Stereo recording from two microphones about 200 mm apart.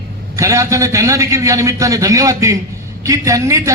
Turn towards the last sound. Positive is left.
turn(degrees=-15)  # may be behind; listen again after turning